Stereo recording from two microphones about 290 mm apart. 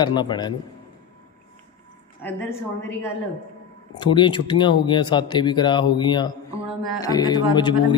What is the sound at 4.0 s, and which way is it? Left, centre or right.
A man's voice, centre.